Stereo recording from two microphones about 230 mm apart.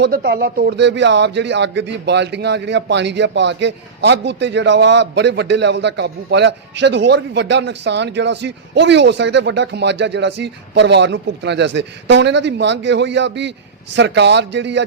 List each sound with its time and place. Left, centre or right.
0.0 s speech: right